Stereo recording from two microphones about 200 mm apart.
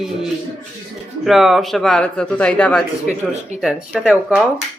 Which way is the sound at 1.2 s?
Centre (ahead or behind).